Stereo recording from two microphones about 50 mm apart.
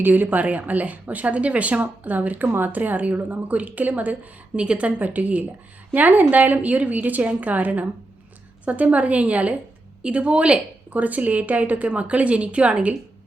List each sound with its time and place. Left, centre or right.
0.0 s a woman's voice: right
10.9 s a woman's voice: right